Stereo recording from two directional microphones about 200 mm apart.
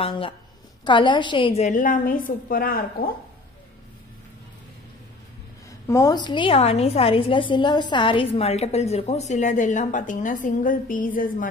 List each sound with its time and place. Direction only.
0.0 s a woman's voice: 25° left (ahead or behind); by 3.1 s 45° left (ahead or behind)
5.9 s a woman's voice: 15° left (ahead or behind); by 11.4 s 45° left (ahead or behind)